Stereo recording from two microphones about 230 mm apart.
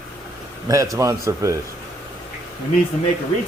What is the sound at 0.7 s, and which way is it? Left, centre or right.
Speech, centre.